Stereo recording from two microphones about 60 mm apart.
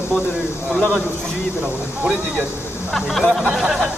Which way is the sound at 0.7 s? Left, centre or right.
Centre.